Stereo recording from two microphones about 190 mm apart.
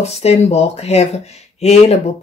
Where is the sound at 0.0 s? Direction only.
35° left (ahead or behind).